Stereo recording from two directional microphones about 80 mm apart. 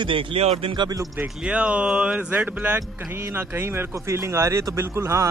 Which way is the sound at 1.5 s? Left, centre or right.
Centre.